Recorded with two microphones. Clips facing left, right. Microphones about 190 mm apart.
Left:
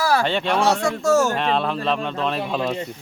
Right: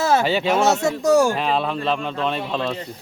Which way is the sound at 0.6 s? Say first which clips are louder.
Right 1 dB; 25° right (ahead or behind).